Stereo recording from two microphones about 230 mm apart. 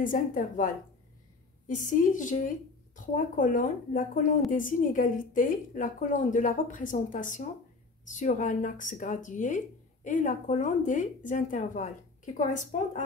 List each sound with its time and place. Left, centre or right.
0.0 s a woman's voice: left